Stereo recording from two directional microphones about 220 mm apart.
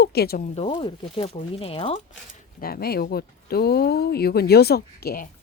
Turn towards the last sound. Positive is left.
turn(degrees=45)  # may be behind; listen again after turning